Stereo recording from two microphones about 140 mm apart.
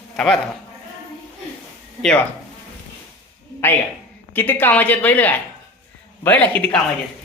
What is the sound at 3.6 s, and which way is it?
Speech, 15° left (ahead or behind).